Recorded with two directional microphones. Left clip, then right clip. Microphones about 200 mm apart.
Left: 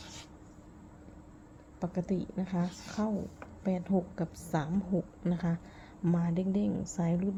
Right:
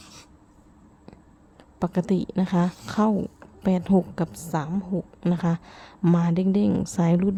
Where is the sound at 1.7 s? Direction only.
30° right (ahead or behind).